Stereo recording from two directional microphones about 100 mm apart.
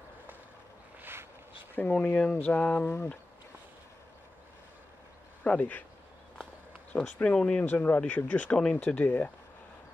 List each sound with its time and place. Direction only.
1.8 s speech: 15° left (ahead or behind)
5.4 s speech: 15° left (ahead or behind)
6.9 s speech: 15° left (ahead or behind)